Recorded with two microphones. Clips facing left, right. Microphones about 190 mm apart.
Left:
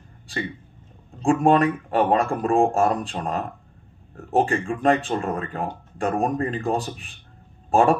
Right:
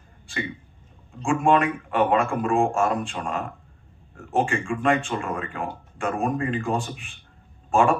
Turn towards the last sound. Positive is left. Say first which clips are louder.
# left 2 dB
turn(degrees=35)  # may be behind; listen again after turning